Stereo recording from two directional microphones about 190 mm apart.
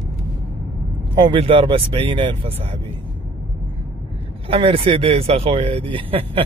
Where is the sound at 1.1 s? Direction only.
25° right (ahead or behind).